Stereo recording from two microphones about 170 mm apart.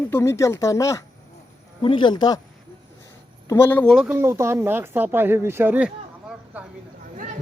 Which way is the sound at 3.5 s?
10° left (ahead or behind).